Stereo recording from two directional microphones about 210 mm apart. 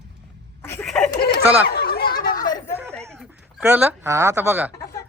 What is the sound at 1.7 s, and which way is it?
Snicker, 50° left (ahead or behind).